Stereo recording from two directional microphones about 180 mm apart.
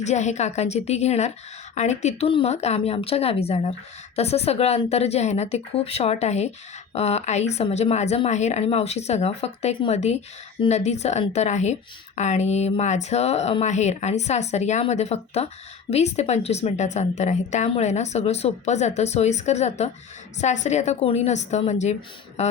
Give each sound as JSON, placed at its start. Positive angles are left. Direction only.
{"t": 0.0, "sound": "speech", "side_deg": 40}